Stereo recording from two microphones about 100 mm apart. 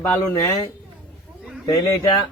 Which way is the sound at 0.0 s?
25° left (ahead or behind).